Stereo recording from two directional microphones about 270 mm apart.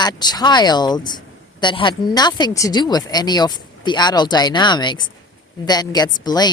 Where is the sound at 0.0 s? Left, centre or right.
Centre.